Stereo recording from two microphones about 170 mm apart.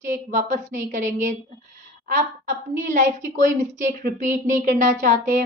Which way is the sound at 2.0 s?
45° right (ahead or behind).